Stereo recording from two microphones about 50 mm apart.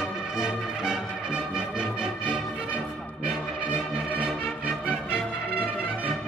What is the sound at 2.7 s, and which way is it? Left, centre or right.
Music, left.